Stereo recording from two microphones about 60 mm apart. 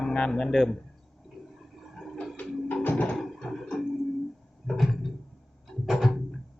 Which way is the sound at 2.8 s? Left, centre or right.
Left.